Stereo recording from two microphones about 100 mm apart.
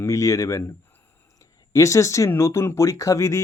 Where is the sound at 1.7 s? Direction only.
30° left (ahead or behind).